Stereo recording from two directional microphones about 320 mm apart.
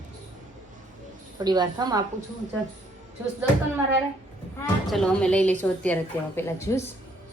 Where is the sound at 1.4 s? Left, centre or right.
Centre.